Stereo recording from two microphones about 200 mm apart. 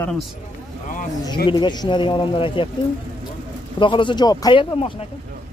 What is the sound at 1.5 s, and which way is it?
Speech, 20° left (ahead or behind).